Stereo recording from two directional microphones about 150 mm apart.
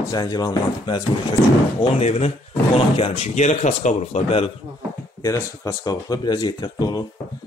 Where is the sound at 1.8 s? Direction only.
45° left (ahead or behind).